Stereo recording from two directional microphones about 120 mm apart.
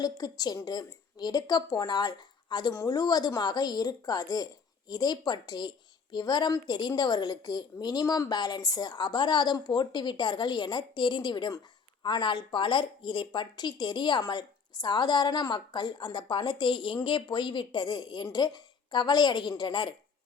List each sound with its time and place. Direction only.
0.0 s speech: 35° left (ahead or behind)